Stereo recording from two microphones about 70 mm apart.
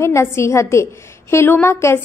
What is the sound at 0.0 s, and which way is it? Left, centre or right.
Speech, left.